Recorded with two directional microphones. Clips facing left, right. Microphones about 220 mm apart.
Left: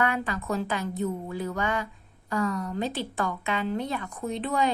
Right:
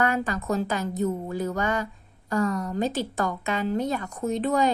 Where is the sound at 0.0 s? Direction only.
40° right (ahead or behind).